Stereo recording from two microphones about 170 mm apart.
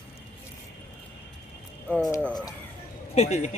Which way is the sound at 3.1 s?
40° left (ahead or behind).